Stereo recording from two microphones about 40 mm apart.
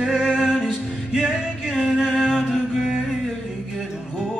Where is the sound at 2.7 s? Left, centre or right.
Centre.